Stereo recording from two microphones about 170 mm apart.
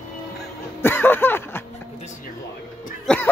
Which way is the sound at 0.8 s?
10° left (ahead or behind).